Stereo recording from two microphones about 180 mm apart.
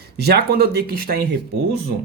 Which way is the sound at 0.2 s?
60° right (ahead or behind).